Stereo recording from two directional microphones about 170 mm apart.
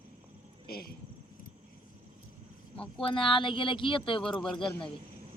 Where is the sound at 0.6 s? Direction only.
60° left (ahead or behind).